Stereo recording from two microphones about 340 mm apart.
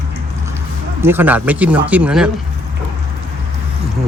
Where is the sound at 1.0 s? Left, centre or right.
Centre.